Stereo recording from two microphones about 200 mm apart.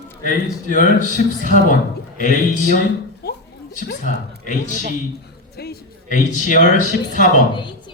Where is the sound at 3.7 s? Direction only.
40° left (ahead or behind).